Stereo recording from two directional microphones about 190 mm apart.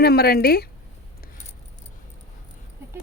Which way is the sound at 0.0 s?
55° left (ahead or behind).